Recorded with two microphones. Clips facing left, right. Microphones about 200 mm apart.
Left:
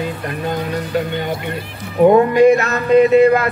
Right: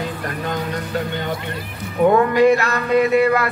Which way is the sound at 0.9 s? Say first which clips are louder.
Left 4 dB; 15° left (ahead or behind).